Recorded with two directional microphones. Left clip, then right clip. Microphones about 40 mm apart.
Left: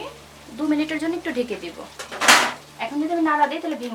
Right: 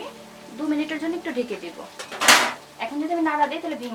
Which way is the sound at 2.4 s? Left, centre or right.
Centre.